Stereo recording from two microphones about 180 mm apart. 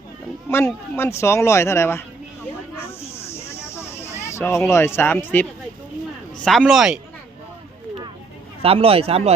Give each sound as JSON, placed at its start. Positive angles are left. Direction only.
{"t": 0.5, "sound": "speech", "side_deg": 15}
{"t": 3.5, "sound": "a sound", "side_deg": 15}
{"t": 4.7, "sound": "speech", "side_deg": 15}
{"t": 8.6, "sound": "a man's voice", "side_deg": -30}